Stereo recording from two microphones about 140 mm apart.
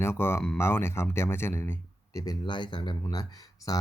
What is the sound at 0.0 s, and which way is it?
Speech, 15° left (ahead or behind).